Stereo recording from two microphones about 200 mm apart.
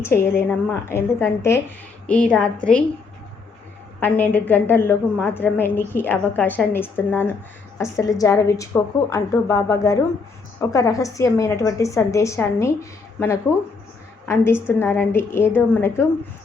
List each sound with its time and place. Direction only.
0.0 s a woman's voice: 10° left (ahead or behind)
4.0 s a woman's voice: 10° left (ahead or behind)